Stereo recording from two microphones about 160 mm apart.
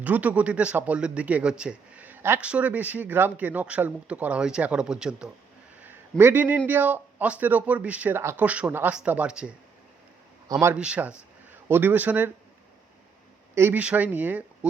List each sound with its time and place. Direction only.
0.0 s a man's voice: 10° right (ahead or behind)
5.8 s a sound: 15° right (ahead or behind)
6.7 s a man's voice: 10° right (ahead or behind)
10.5 s a man's voice: 15° right (ahead or behind)
13.6 s a man's voice: 10° right (ahead or behind)